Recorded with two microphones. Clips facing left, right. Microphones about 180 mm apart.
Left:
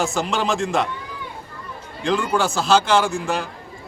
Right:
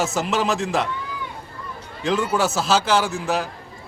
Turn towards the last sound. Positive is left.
turn(degrees=-5)  # may be behind; listen again after turning